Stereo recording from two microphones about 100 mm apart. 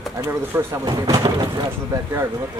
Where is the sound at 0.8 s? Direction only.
45° right (ahead or behind).